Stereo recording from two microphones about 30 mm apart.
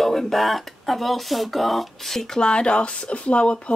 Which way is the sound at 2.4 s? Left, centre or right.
Left.